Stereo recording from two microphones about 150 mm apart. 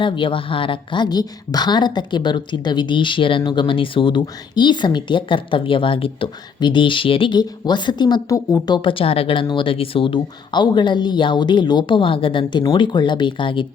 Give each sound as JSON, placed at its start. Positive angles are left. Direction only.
{"t": 0.0, "sound": "a woman's voice", "side_deg": 35}